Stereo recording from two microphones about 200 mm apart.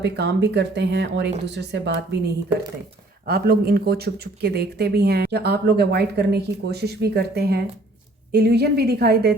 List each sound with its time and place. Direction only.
0.0 s speech: 55° right (ahead or behind)